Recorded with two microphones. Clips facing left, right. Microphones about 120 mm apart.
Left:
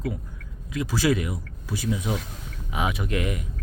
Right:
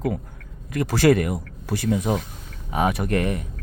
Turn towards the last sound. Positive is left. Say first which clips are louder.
# right 5 dB
turn(degrees=-40)  # may be behind; listen again after turning